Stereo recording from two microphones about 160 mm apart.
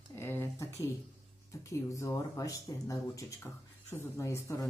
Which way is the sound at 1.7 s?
20° left (ahead or behind).